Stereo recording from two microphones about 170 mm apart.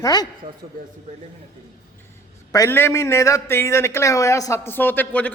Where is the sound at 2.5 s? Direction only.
15° left (ahead or behind).